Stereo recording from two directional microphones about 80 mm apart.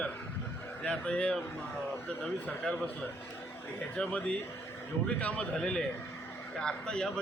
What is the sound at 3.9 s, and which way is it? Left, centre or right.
A man's voice, centre.